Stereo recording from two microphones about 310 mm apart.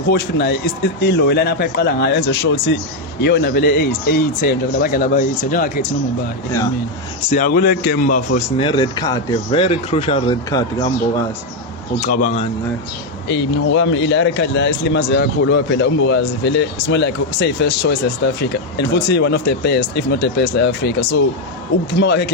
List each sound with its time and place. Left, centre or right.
0.1 s a man's voice: left
7.3 s a man's voice: left
11.9 s a man's voice: left
13.2 s a man's voice: left